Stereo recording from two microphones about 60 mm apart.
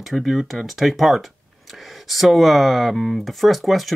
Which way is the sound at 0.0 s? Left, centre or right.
Centre.